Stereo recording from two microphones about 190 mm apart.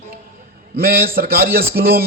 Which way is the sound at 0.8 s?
50° right (ahead or behind).